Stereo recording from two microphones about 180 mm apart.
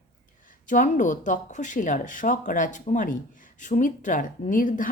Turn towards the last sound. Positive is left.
turn(degrees=50)  # may be behind; listen again after turning